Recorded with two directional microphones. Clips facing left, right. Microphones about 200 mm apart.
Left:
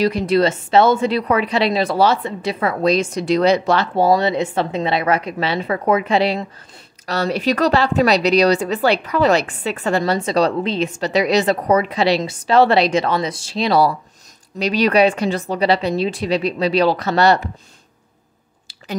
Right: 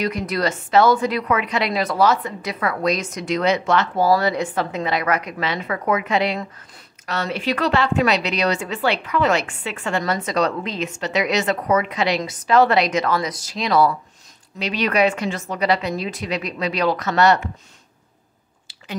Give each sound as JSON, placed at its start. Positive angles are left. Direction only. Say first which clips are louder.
{"t": 0.0, "sound": "speech", "louder": "left 6 dB", "side_deg": 30}